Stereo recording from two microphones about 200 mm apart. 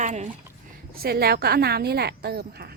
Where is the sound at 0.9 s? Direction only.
50° right (ahead or behind).